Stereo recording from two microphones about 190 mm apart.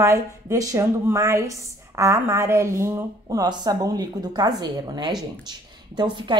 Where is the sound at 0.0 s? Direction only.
15° right (ahead or behind).